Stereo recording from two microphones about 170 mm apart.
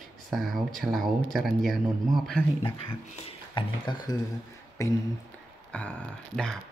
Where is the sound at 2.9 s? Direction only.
30° left (ahead or behind).